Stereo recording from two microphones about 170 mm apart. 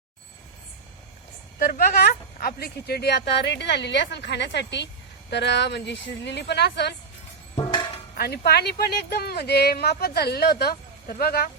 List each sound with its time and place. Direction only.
2.4 s a woman's voice: 65° left (ahead or behind)
7.5 s music: 30° left (ahead or behind)
8.1 s speech: 70° left (ahead or behind)